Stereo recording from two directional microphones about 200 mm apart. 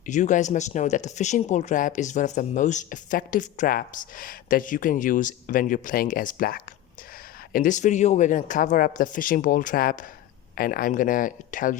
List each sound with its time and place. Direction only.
0.0 s speech: 40° left (ahead or behind)